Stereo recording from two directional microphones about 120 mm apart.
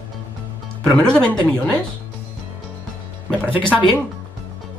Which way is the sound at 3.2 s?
15° right (ahead or behind).